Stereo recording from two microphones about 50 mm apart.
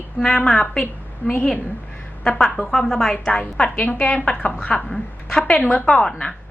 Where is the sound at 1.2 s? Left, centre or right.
Left.